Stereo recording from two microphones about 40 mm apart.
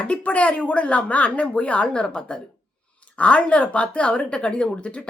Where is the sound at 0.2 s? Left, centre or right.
Left.